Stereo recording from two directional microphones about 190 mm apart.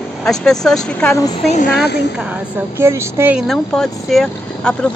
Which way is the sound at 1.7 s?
60° left (ahead or behind).